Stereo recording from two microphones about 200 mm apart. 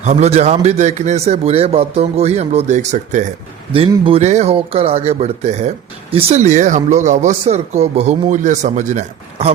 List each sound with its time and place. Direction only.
0.0 s speech: 35° right (ahead or behind)
3.7 s speech: 25° right (ahead or behind)